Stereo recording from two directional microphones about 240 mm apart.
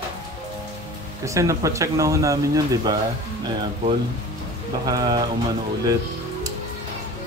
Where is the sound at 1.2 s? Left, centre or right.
Centre.